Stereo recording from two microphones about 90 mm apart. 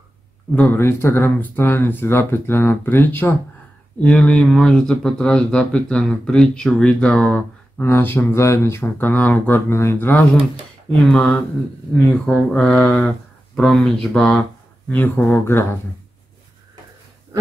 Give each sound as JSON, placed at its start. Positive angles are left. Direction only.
{"t": 0.6, "sound": "speech", "side_deg": 25}
{"t": 4.0, "sound": "speech", "side_deg": 10}
{"t": 11.1, "sound": "speech", "side_deg": 5}
{"t": 14.9, "sound": "speech", "side_deg": 20}